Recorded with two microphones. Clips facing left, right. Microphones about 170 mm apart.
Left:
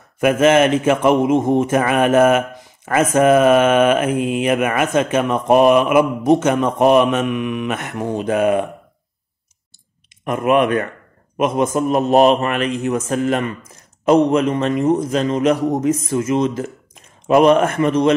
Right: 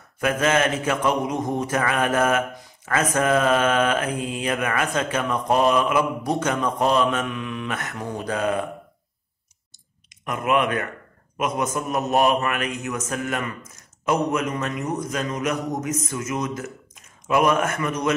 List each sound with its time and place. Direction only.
0.2 s mantra: 25° left (ahead or behind)
10.6 s speech: 45° left (ahead or behind)
11.3 s mantra: 25° left (ahead or behind)
12.8 s speech: 30° left (ahead or behind)
14.3 s mantra: 30° left (ahead or behind)